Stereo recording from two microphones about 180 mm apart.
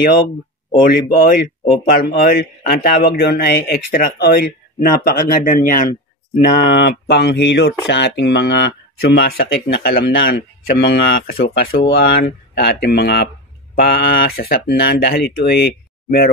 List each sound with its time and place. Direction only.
0.8 s a man's voice: 55° left (ahead or behind)
6.7 s a man's voice: 65° left (ahead or behind)